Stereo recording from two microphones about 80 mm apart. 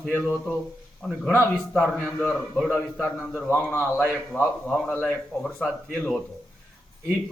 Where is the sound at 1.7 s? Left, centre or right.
Centre.